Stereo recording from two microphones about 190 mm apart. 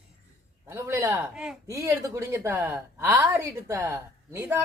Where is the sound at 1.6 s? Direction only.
15° right (ahead or behind).